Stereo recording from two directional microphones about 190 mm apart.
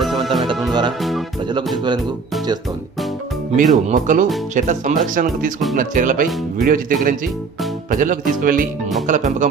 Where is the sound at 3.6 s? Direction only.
40° right (ahead or behind).